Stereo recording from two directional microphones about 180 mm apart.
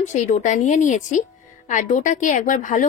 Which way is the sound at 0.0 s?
40° left (ahead or behind).